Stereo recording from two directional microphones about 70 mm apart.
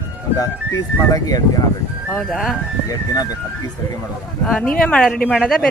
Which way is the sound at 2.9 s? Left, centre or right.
Left.